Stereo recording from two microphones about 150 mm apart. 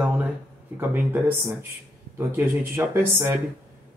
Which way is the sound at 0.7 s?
15° right (ahead or behind).